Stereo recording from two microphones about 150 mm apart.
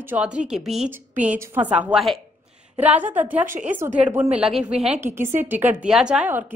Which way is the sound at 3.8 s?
10° right (ahead or behind).